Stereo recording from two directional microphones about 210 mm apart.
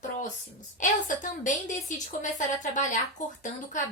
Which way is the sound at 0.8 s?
35° left (ahead or behind).